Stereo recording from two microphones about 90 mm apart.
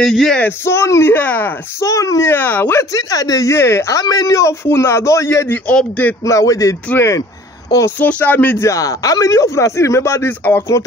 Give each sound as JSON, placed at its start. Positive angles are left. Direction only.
{"t": 0.0, "sound": "speech", "side_deg": 0}
{"t": 0.4, "sound": "speech", "side_deg": 25}
{"t": 1.1, "sound": "speech", "side_deg": 20}
{"t": 1.8, "sound": "speech", "side_deg": 35}
{"t": 2.2, "sound": "speech", "side_deg": 20}
{"t": 2.8, "sound": "speech", "side_deg": 45}
{"t": 4.0, "sound": "speech", "side_deg": 45}
{"t": 5.7, "sound": "speech", "side_deg": 15}
{"t": 6.2, "sound": "speech", "side_deg": 40}
{"t": 8.0, "sound": "speech", "side_deg": 15}
{"t": 8.5, "sound": "speech", "side_deg": 35}